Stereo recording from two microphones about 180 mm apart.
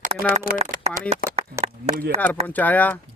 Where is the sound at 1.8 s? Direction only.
40° right (ahead or behind).